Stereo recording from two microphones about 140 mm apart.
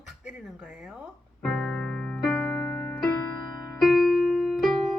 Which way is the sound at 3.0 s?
30° left (ahead or behind).